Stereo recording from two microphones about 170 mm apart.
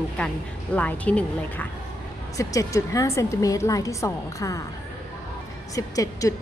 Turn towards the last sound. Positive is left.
turn(degrees=20)  # may be behind; listen again after turning